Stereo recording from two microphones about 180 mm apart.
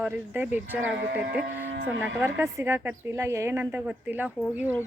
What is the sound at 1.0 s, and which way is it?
Speech, 65° right (ahead or behind).